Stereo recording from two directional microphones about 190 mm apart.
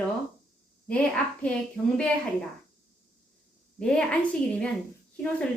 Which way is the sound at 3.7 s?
5° left (ahead or behind).